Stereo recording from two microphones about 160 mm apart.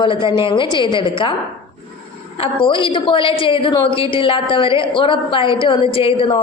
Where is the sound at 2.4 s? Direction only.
30° left (ahead or behind).